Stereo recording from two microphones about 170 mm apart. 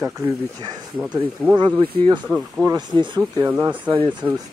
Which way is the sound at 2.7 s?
25° right (ahead or behind).